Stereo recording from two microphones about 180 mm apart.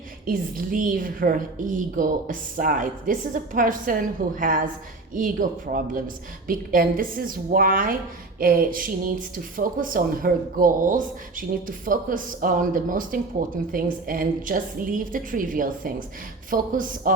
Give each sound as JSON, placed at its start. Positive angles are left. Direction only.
{"t": 0.3, "sound": "speech", "side_deg": -50}